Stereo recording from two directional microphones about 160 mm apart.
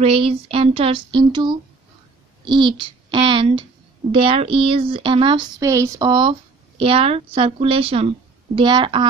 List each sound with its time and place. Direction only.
0.0 s a child's voice: 35° right (ahead or behind)